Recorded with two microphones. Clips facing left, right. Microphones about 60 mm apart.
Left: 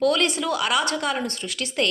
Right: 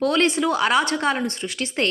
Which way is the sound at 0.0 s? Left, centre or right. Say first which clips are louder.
Right 2 dB; right.